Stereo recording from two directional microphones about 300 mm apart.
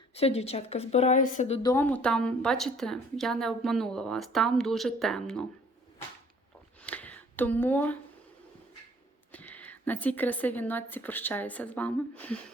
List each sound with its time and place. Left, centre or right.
0.1 s a woman's voice: centre
1.7 s a woman's voice: centre
6.8 s a sound: centre
9.3 s a woman's voice: centre